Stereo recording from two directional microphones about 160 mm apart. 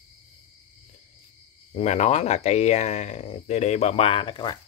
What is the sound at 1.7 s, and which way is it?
Speech, 45° left (ahead or behind).